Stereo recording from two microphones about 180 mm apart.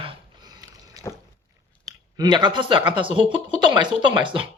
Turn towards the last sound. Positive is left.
turn(degrees=-30)  # may be behind; listen again after turning